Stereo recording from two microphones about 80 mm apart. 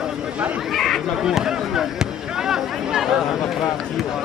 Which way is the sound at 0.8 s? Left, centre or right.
Centre.